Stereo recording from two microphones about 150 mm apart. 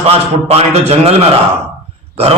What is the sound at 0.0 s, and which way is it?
A man's voice, 40° right (ahead or behind).